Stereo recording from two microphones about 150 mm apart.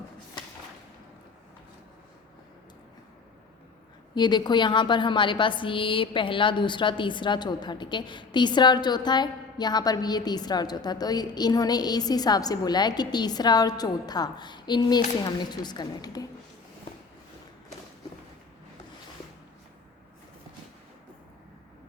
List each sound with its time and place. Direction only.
4.1 s a woman's voice: 30° left (ahead or behind)